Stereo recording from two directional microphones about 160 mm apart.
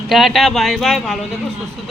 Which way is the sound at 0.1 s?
Centre (ahead or behind).